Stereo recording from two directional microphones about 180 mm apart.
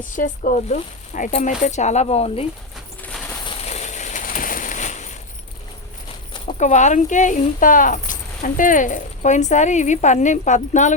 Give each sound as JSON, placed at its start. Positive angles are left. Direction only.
{"t": 0.2, "sound": "speech", "side_deg": 45}
{"t": 3.6, "sound": "a sound", "side_deg": 35}
{"t": 6.5, "sound": "speech", "side_deg": 40}